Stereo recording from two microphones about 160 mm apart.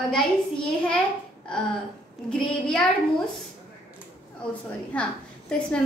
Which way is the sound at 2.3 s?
5° left (ahead or behind).